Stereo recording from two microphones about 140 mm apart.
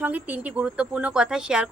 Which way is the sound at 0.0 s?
10° right (ahead or behind).